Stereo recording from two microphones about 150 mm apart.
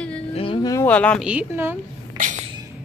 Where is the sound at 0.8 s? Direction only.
10° left (ahead or behind).